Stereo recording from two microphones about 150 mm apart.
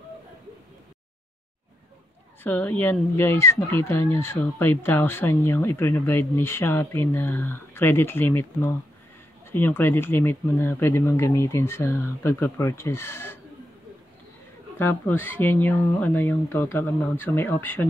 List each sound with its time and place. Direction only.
2.4 s speech: 10° left (ahead or behind)
14.8 s speech: 15° left (ahead or behind)